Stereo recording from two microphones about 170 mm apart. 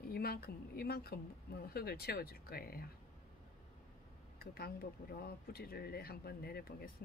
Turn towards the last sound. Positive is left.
turn(degrees=65)  # may be behind; listen again after turning